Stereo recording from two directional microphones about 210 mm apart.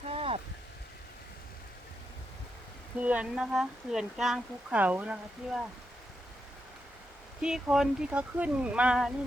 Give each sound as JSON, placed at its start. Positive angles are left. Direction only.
{"t": 0.1, "sound": "a sound", "side_deg": -25}
{"t": 3.0, "sound": "speech", "side_deg": -5}
{"t": 7.4, "sound": "speech", "side_deg": 0}